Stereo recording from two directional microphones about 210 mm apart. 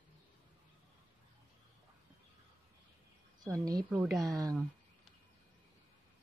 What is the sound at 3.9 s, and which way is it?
Speech, 5° right (ahead or behind).